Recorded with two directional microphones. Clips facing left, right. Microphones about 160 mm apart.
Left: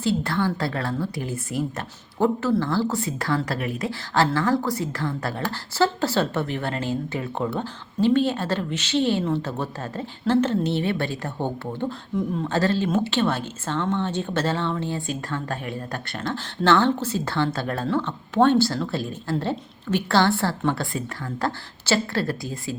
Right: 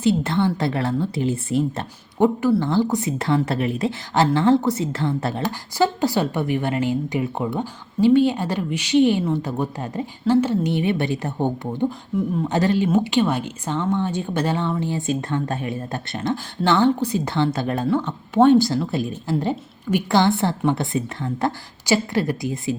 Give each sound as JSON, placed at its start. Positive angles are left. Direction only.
{"t": 0.0, "sound": "speech", "side_deg": -20}